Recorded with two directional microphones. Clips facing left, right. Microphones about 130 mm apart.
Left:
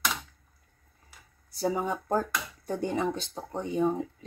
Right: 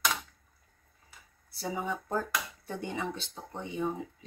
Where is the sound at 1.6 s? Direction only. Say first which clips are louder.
Left 6 dB; 45° left (ahead or behind).